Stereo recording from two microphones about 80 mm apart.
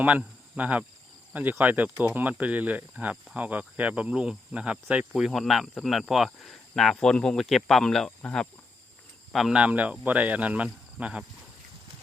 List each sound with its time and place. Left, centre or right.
0.0 s speech: centre
5.2 s speech: centre
9.3 s speech: centre
9.6 s speech: centre